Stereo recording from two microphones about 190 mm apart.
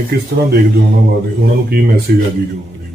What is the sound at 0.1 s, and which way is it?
Speech, 55° right (ahead or behind).